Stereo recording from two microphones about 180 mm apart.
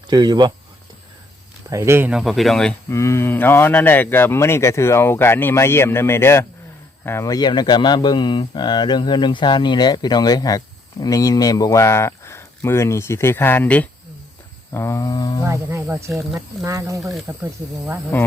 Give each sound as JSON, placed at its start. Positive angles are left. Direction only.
{"t": 0.1, "sound": "speech", "side_deg": -20}
{"t": 1.7, "sound": "speech", "side_deg": -15}
{"t": 2.9, "sound": "speech", "side_deg": 15}
{"t": 15.4, "sound": "speech", "side_deg": -15}